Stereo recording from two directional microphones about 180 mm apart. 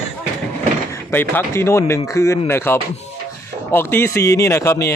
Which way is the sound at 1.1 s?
10° left (ahead or behind).